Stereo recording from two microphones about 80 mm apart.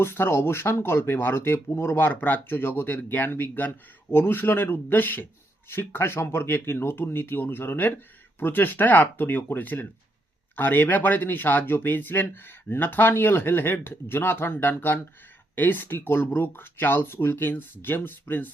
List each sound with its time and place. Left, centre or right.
0.0 s speech: left